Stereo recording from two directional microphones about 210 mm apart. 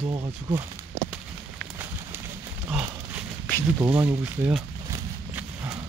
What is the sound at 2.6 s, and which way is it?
Horse, 10° right (ahead or behind).